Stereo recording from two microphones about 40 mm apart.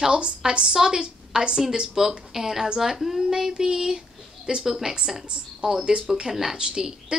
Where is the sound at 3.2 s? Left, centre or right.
Centre.